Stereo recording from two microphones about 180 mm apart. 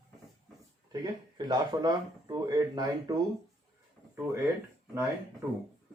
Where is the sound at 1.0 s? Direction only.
25° right (ahead or behind).